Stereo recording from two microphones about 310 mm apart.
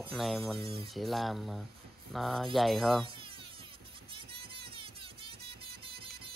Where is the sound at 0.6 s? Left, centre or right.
Centre.